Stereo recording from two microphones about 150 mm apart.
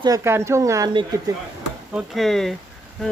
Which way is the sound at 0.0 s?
20° right (ahead or behind).